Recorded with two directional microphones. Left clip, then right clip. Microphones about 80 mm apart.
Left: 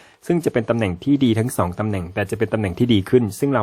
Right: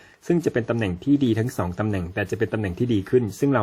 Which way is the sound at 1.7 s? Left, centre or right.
Left.